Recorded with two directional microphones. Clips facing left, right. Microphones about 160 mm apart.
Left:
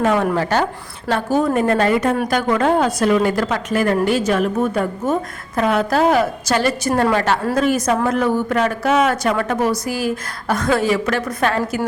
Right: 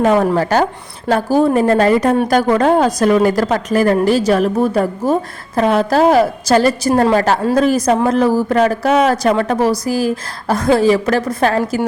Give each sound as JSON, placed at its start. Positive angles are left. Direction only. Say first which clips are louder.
{"t": 0.0, "sound": "a woman's voice", "louder": "right 4 dB", "side_deg": -35}